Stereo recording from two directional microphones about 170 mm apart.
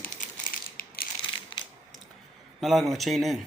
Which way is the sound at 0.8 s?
60° left (ahead or behind).